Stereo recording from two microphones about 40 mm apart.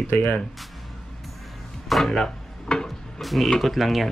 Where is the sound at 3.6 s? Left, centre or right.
Centre.